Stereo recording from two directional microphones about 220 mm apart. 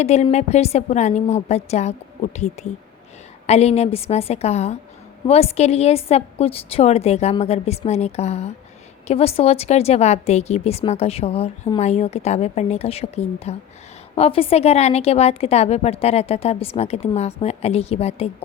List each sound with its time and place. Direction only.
0.0 s a woman's voice: 30° left (ahead or behind)